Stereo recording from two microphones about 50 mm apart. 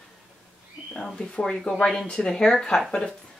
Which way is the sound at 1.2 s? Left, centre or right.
Centre.